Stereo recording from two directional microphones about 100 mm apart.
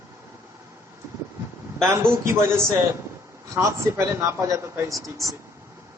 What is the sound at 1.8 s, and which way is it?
A man's voice, 25° right (ahead or behind).